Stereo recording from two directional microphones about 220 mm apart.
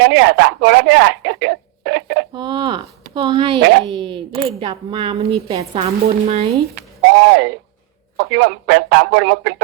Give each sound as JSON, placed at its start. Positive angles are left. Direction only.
{"t": 0.0, "sound": "speech", "side_deg": -50}
{"t": 2.3, "sound": "a woman's voice", "side_deg": -20}
{"t": 6.7, "sound": "a man's voice", "side_deg": -50}